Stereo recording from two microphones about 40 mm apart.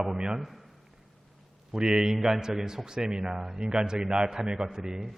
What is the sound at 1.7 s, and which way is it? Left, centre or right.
A man's voice, centre.